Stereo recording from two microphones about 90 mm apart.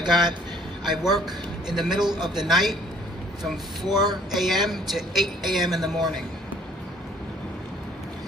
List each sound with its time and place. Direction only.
0.0 s a man's voice: 5° right (ahead or behind)
3.9 s speech: 50° right (ahead or behind)
4.3 s speech: centre (ahead or behind)